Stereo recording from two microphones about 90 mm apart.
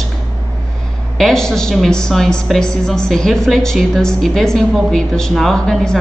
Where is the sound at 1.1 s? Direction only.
5° left (ahead or behind).